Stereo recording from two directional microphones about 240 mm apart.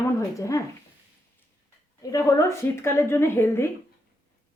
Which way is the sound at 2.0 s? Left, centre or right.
Centre.